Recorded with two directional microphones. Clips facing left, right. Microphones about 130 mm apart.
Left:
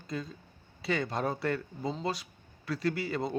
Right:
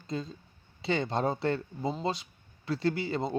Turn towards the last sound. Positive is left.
turn(degrees=-25)  # may be behind; listen again after turning